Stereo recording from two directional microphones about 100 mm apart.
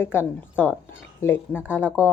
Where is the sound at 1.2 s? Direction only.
20° left (ahead or behind).